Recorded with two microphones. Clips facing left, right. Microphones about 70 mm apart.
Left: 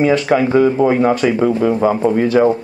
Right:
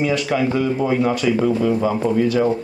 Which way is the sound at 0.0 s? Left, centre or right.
Left.